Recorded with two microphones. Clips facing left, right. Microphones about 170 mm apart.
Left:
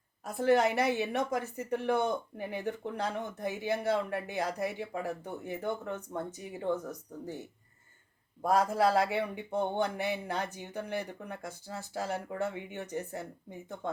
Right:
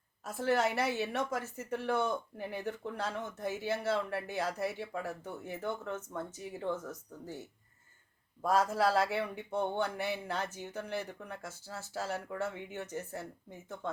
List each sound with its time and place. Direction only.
0.3 s a woman's voice: 15° left (ahead or behind)